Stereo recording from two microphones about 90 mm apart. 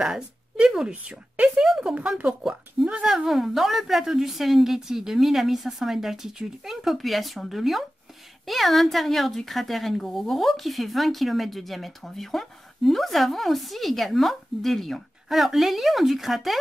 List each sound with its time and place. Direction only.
0.0 s a woman's voice: 5° right (ahead or behind)